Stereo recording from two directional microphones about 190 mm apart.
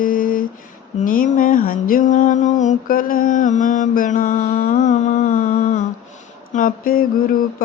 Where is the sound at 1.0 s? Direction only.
45° left (ahead or behind).